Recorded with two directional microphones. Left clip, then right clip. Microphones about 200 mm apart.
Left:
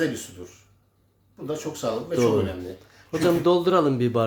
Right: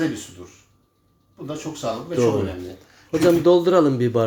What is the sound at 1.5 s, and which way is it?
Speech, 20° left (ahead or behind).